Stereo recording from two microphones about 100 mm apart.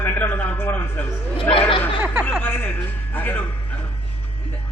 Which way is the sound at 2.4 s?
20° left (ahead or behind).